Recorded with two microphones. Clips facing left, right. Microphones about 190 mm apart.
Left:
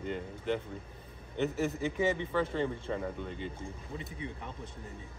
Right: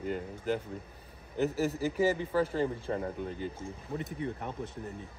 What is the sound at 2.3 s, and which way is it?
Speech, 35° right (ahead or behind).